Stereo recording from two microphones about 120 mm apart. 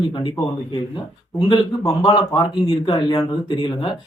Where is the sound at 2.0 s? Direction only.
45° left (ahead or behind).